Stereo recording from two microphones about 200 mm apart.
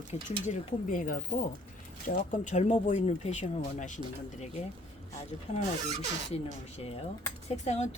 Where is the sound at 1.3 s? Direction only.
25° left (ahead or behind).